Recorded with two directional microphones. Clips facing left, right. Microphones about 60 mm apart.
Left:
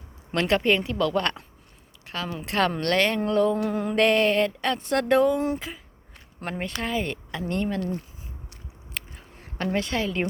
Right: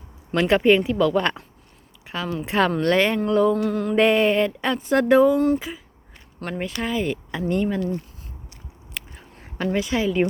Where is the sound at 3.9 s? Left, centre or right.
Centre.